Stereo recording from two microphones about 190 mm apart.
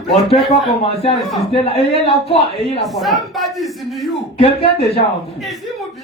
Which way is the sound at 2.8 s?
Centre (ahead or behind).